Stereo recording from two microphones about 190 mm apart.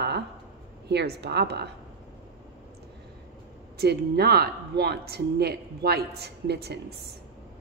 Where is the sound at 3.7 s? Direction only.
55° right (ahead or behind).